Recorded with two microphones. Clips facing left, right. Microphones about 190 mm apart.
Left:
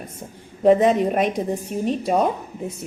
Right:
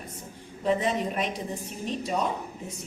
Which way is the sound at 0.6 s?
50° left (ahead or behind).